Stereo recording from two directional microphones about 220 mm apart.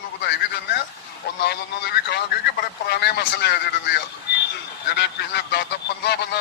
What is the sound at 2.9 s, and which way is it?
Speech, 50° left (ahead or behind).